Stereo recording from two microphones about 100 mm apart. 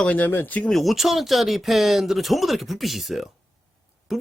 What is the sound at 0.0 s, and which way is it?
Speech, 15° left (ahead or behind).